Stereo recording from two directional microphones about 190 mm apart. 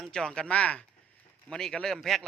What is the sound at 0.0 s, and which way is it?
A man's voice, 5° left (ahead or behind).